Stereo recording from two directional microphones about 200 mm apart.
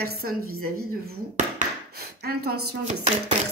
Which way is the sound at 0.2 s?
45° right (ahead or behind).